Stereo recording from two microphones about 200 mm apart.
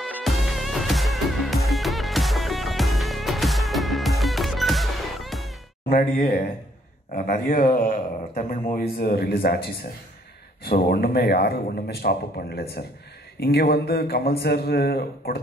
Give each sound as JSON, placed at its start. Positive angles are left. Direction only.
{"t": 0.1, "sound": "music", "side_deg": 0}
{"t": 5.9, "sound": "speech", "side_deg": 45}